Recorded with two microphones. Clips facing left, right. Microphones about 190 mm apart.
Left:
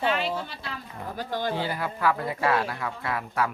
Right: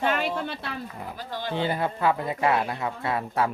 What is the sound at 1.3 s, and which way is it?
Speech, 45° left (ahead or behind).